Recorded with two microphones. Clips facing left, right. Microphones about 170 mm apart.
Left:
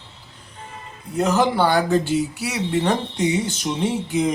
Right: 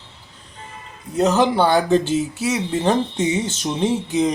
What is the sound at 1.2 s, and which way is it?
Speech, 20° right (ahead or behind).